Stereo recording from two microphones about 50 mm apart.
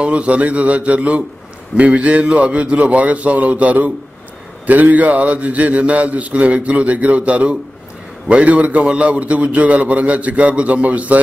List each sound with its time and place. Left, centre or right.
0.0 s a man's voice: right